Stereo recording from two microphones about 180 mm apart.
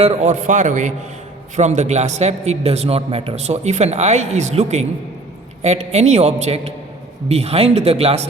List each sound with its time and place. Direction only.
0.0 s a man's voice: 35° right (ahead or behind)